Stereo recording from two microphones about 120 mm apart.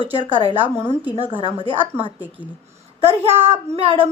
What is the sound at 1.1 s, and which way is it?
A woman's voice, 45° right (ahead or behind).